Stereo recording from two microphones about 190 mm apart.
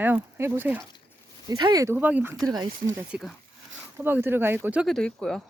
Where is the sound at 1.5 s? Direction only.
20° right (ahead or behind).